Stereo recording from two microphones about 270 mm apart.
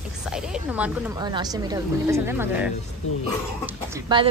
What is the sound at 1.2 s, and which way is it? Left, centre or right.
Speech, centre.